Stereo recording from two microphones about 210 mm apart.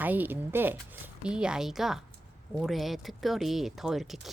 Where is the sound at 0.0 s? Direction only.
10° right (ahead or behind).